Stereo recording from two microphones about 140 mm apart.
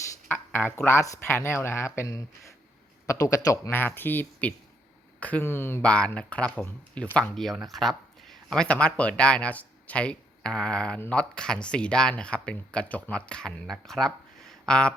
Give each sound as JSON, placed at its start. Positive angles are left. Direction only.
{"t": 0.3, "sound": "speech", "side_deg": 15}